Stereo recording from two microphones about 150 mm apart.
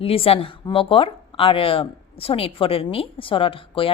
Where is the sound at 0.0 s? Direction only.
40° left (ahead or behind).